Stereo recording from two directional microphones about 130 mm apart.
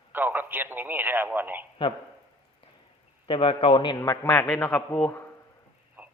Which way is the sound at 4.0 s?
20° left (ahead or behind).